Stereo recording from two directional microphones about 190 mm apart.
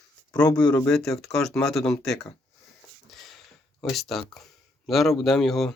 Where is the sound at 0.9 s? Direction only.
Centre (ahead or behind).